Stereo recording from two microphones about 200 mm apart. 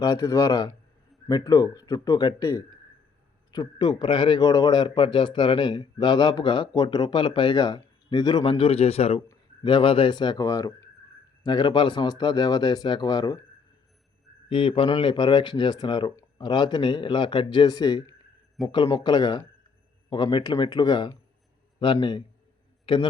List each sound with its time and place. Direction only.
0.0 s a man's voice: 20° left (ahead or behind)
14.5 s a man's voice: 25° left (ahead or behind)